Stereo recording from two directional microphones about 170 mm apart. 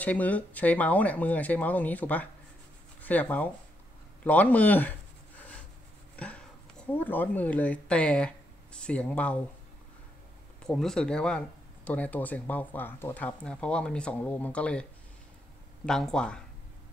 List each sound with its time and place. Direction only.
0.0 s speech: 10° left (ahead or behind)
6.1 s a sound: 5° left (ahead or behind)
6.9 s speech: 10° left (ahead or behind)
10.6 s speech: 5° left (ahead or behind)